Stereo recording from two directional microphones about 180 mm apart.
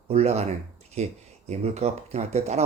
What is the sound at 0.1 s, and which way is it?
Speech, 35° right (ahead or behind).